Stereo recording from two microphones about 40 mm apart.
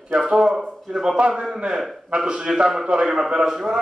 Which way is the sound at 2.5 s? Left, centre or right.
Centre.